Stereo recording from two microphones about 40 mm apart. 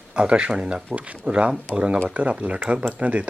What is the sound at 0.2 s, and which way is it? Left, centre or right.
Speech, right.